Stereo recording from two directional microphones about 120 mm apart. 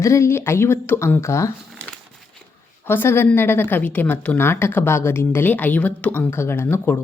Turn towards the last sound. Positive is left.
turn(degrees=20)  # may be behind; listen again after turning